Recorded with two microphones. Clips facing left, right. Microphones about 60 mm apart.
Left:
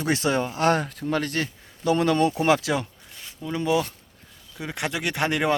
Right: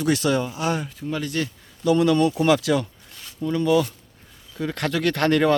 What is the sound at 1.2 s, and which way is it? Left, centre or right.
Speech, left.